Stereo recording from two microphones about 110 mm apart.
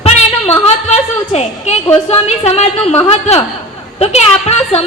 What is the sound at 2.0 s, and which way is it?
A woman's voice, 75° left (ahead or behind).